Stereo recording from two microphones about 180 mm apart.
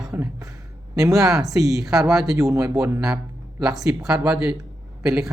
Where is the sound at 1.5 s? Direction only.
20° right (ahead or behind).